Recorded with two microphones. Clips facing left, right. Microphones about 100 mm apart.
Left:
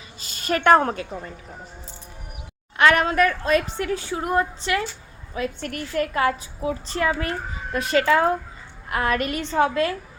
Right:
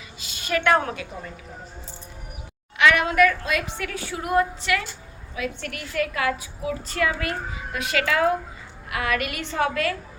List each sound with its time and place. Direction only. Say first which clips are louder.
0.2 s a woman's voice: left 2 dB; 45° left (ahead or behind)
2.7 s a woman's voice: left 1 dB; 40° left (ahead or behind)